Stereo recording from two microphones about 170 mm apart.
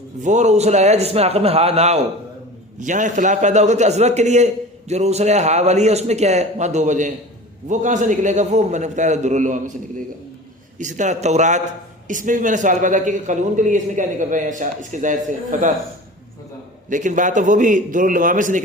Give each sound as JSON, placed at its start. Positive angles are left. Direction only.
{"t": 0.2, "sound": "a man's voice", "side_deg": -45}
{"t": 10.8, "sound": "a man's voice", "side_deg": -45}
{"t": 16.9, "sound": "a man's voice", "side_deg": -50}